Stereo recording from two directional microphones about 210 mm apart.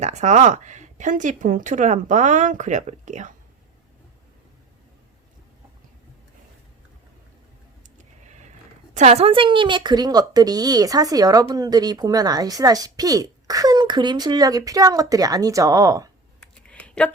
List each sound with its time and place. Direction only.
0.0 s speech: 35° right (ahead or behind)
9.0 s speech: 30° right (ahead or behind); by 16.0 s 15° right (ahead or behind)
16.4 s a sound: 5° left (ahead or behind)